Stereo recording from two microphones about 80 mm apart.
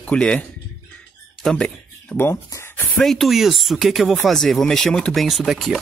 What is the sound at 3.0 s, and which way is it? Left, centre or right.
Speech, centre.